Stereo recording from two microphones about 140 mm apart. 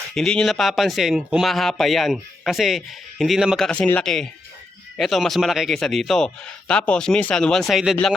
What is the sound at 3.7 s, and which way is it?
Speech, 10° left (ahead or behind).